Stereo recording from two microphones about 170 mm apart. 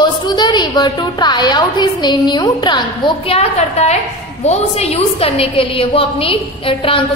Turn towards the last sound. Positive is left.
turn(degrees=30)  # may be behind; listen again after turning